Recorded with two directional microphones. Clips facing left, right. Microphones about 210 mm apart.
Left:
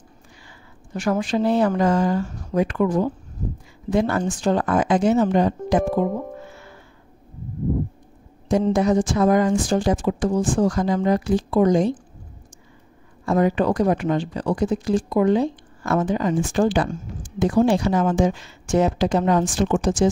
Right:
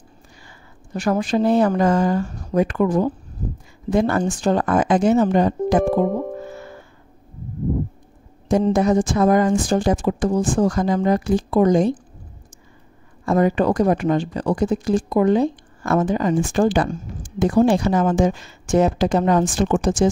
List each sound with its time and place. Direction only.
0.9 s speech: 35° right (ahead or behind)
6.4 s music: 40° right (ahead or behind)
8.7 s speech: 50° right (ahead or behind)
13.2 s speech: 45° right (ahead or behind)